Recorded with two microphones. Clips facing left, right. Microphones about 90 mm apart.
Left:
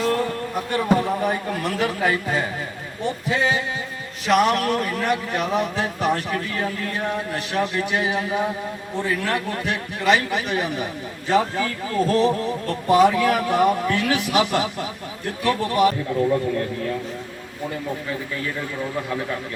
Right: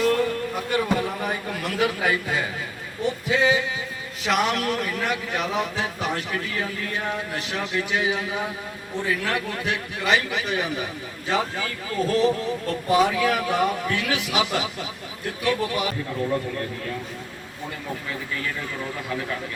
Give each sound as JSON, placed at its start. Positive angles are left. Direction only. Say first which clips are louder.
{"t": 0.0, "sound": "speech", "louder": "right 1 dB", "side_deg": 35}
{"t": 12.9, "sound": "speech", "louder": "left 4 dB", "side_deg": 45}